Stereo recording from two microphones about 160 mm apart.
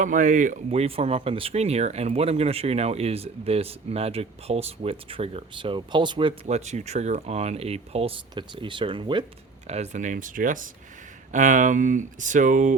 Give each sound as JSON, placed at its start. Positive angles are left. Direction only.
{"t": 0.0, "sound": "speech", "side_deg": -55}
{"t": 6.4, "sound": "speech", "side_deg": -45}
{"t": 9.6, "sound": "speech", "side_deg": -45}